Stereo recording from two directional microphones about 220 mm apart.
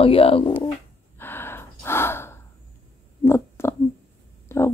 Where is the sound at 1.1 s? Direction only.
10° left (ahead or behind).